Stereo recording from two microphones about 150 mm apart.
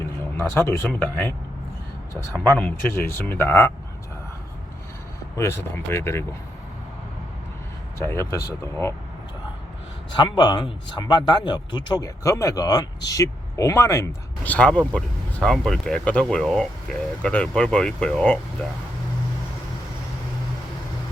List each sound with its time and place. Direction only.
0.0 s speech: 15° left (ahead or behind)
2.6 s speech: 15° left (ahead or behind)
5.4 s speech: 15° left (ahead or behind)
7.9 s speech: 15° left (ahead or behind)
10.2 s speech: 30° left (ahead or behind); by 18.3 s 10° left (ahead or behind)